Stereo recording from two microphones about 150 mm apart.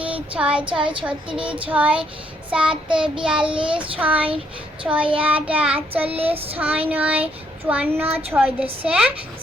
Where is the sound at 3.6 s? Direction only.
35° right (ahead or behind).